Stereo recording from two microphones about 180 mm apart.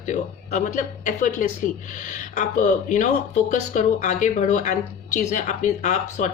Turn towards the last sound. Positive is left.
turn(degrees=40)  # may be behind; listen again after turning